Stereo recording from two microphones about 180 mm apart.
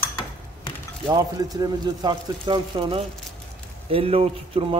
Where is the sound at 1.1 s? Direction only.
20° right (ahead or behind).